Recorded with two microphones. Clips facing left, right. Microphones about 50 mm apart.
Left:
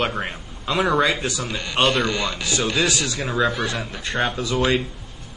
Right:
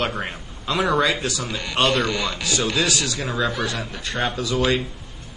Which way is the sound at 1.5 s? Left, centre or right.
Centre.